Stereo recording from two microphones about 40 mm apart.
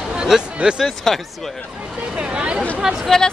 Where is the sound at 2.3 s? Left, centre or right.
Right.